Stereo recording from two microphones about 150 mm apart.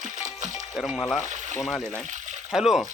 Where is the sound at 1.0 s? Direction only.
15° left (ahead or behind).